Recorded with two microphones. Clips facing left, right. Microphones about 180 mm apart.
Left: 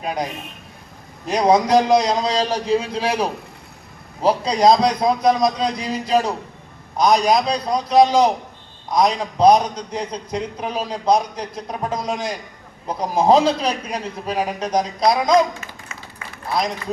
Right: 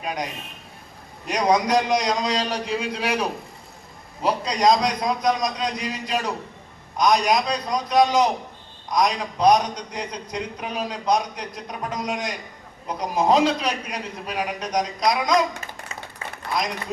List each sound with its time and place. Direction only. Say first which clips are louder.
1.3 s a man's voice: left 5 dB; 30° left (ahead or behind)